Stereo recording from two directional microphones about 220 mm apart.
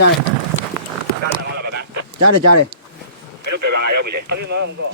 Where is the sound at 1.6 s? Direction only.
45° right (ahead or behind).